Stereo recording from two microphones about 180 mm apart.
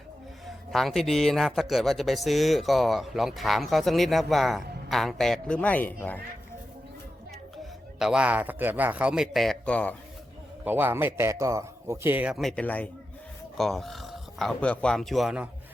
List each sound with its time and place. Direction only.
0.4 s speech: centre (ahead or behind)
7.9 s speech: 5° right (ahead or behind)
10.6 s a man's voice: 10° right (ahead or behind)